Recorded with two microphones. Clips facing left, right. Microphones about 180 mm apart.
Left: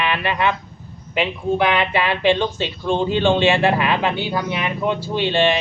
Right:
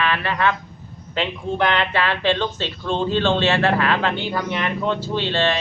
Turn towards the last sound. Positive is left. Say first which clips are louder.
# left 3 dB
turn(degrees=15)  # may be behind; listen again after turning